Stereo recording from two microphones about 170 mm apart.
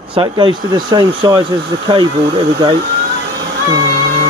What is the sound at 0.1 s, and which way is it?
Speech, 25° right (ahead or behind).